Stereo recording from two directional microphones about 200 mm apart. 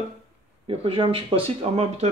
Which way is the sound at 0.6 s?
30° right (ahead or behind).